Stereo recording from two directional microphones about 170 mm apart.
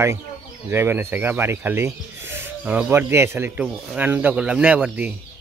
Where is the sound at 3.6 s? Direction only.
Centre (ahead or behind).